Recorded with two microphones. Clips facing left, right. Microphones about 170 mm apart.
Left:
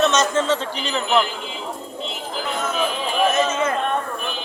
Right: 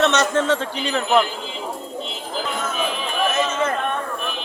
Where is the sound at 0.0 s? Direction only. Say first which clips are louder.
Even; 65° right (ahead or behind).